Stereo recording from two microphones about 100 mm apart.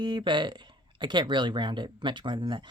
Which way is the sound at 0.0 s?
50° right (ahead or behind).